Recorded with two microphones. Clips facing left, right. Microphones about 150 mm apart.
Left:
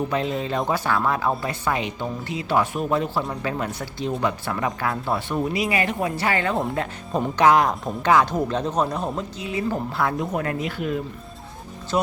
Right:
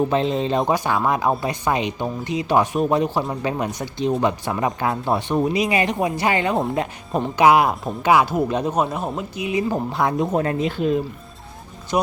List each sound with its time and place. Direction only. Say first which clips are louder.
0.1 s speech: right 4 dB; 25° right (ahead or behind)